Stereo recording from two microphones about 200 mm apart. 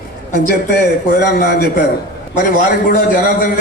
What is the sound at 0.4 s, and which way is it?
A man's voice, 50° left (ahead or behind).